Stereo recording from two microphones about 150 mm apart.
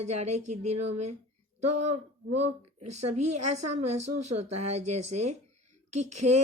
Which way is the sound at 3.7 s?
50° right (ahead or behind).